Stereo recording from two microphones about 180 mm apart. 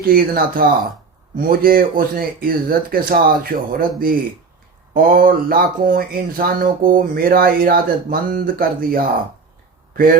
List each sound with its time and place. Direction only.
0.0 s speech: 55° right (ahead or behind)